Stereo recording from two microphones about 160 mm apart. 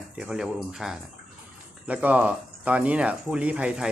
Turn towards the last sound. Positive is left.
turn(degrees=-5)  # may be behind; listen again after turning